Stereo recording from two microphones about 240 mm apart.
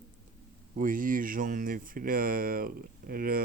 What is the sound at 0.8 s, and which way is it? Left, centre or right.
Speech, right.